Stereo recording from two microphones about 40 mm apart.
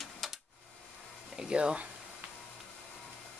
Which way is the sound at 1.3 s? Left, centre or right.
Right.